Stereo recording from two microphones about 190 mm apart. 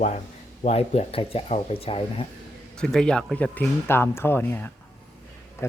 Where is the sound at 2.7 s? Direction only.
5° left (ahead or behind).